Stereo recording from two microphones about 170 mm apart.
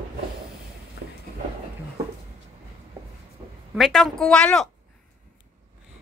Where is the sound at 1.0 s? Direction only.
85° left.